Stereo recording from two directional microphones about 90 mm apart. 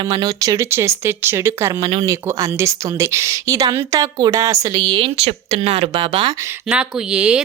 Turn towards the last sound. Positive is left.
turn(degrees=-10)  # may be behind; listen again after turning